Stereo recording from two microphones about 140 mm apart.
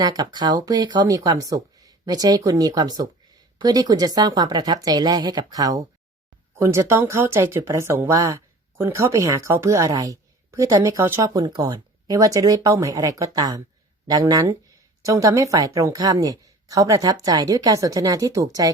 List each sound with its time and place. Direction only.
0.0 s a woman's voice: 30° right (ahead or behind)